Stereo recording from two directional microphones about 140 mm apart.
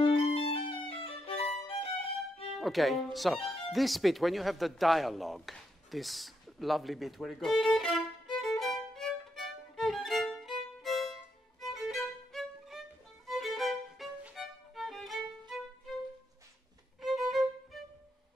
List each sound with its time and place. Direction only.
0.0 s violin: 40° left (ahead or behind)
2.6 s music: centre (ahead or behind)
10.8 s violin: centre (ahead or behind)
11.7 s music: centre (ahead or behind)
17.0 s music: centre (ahead or behind)